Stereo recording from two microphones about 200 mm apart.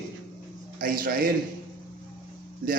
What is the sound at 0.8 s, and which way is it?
Speech, 45° right (ahead or behind).